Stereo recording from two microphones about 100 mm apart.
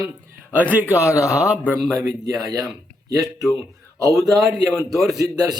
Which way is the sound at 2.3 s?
40° right (ahead or behind).